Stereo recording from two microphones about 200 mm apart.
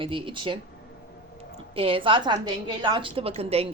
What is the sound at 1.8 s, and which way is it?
A woman's voice, 25° right (ahead or behind).